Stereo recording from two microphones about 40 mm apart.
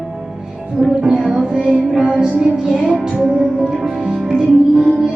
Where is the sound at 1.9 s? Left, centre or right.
Right.